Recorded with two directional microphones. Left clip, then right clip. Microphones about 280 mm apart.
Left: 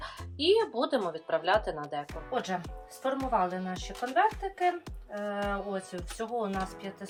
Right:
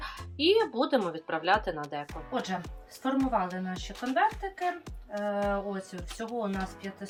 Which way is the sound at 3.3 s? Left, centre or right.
Left.